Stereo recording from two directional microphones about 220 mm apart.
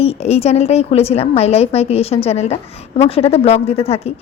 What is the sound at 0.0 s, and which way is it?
A woman's voice, 25° left (ahead or behind).